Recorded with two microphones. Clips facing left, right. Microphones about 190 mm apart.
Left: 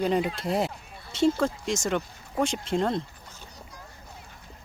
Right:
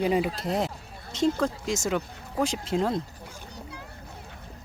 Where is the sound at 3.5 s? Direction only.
70° right (ahead or behind).